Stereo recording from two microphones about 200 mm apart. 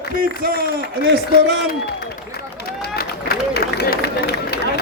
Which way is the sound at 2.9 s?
50° left (ahead or behind).